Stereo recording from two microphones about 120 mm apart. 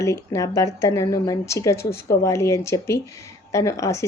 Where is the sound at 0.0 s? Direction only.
25° left (ahead or behind).